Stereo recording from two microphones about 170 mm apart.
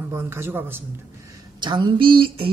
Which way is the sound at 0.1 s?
15° right (ahead or behind).